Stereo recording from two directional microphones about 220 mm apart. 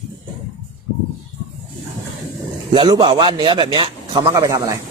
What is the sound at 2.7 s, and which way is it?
A man's voice, 20° right (ahead or behind).